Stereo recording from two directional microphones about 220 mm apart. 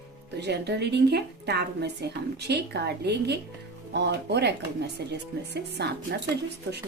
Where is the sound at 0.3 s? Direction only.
50° right (ahead or behind).